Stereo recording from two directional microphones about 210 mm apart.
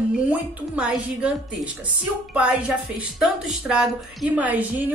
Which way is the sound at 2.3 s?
5° right (ahead or behind).